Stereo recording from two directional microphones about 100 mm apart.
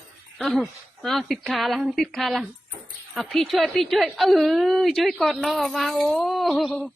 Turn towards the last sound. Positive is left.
turn(degrees=0)  # may be behind; listen again after turning